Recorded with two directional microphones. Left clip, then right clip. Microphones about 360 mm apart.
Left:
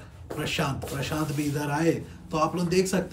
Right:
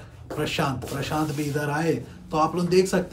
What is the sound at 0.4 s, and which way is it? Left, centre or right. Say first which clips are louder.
Speech: right 3 dB; centre.